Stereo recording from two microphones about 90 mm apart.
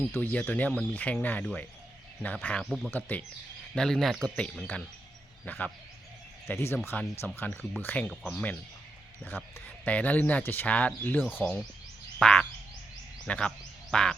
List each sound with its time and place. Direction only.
0.1 s speech: 20° left (ahead or behind)
2.6 s speech: centre (ahead or behind)
2.9 s speech: 20° left (ahead or behind)
3.8 s speech: 5° left (ahead or behind); by 6.7 s 30° left (ahead or behind)
6.8 s speech: 20° left (ahead or behind)
8.1 s speech: 10° left (ahead or behind)
9.2 s a man's voice: 25° left (ahead or behind); by 14.2 s 5° left (ahead or behind)